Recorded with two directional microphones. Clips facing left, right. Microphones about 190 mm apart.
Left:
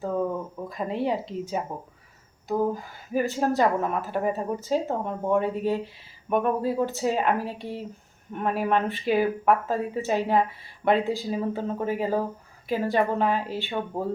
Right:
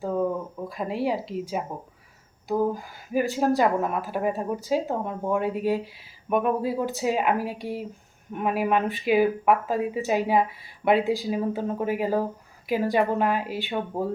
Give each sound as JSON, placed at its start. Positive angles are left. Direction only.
{"t": 0.7, "sound": "speech", "side_deg": -5}
{"t": 3.1, "sound": "speech", "side_deg": -10}